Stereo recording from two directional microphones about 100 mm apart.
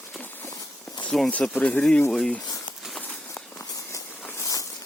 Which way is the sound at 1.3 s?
15° left (ahead or behind).